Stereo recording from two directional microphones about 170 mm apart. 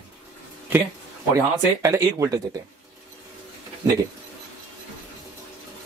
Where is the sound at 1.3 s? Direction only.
15° right (ahead or behind).